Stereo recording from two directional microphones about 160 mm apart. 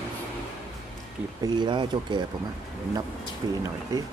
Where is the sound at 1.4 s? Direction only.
25° right (ahead or behind).